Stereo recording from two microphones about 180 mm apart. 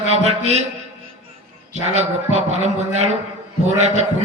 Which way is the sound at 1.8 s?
40° right (ahead or behind).